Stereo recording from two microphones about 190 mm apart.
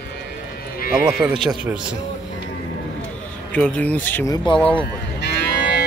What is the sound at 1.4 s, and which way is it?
Speech, 5° right (ahead or behind).